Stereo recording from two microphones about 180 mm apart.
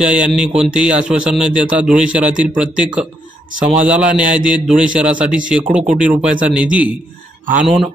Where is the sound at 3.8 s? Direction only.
5° right (ahead or behind).